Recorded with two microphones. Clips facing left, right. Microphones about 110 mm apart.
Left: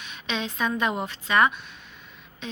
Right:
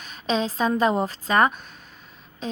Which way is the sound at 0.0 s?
35° right (ahead or behind).